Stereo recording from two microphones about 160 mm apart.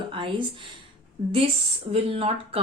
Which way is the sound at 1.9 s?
35° right (ahead or behind).